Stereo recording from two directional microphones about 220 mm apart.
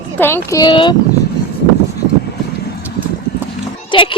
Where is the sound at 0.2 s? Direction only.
10° left (ahead or behind).